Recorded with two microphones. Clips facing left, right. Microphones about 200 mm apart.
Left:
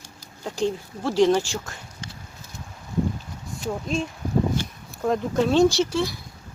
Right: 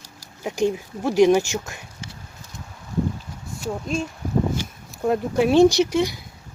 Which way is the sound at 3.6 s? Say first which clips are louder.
Right 1 dB; 5° right (ahead or behind).